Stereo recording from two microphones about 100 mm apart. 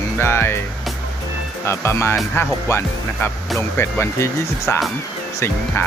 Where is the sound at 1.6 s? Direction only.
25° left (ahead or behind).